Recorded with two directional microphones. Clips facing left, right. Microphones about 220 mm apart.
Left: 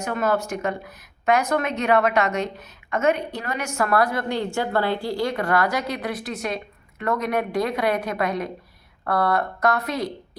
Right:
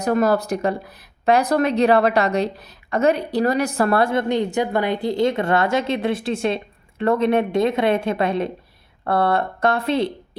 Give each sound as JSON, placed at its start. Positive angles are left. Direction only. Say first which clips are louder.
{"t": 0.0, "sound": "speech", "louder": "right 5 dB", "side_deg": -35}